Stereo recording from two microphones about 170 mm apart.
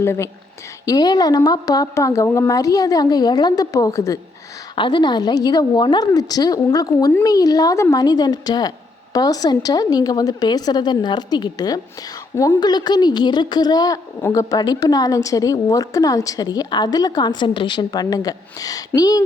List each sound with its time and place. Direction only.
0.0 s a woman's voice: 15° left (ahead or behind)